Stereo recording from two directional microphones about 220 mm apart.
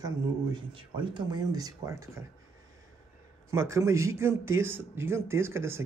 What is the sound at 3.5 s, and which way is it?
Speech, 15° right (ahead or behind).